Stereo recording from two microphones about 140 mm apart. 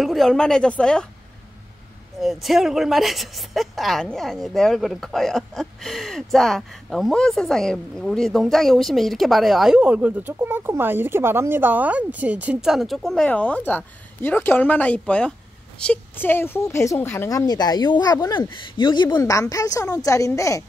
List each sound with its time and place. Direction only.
0.0 s a woman's voice: centre (ahead or behind)
2.4 s a woman's voice: centre (ahead or behind); by 19.0 s 35° left (ahead or behind)
19.1 s speech: 25° left (ahead or behind)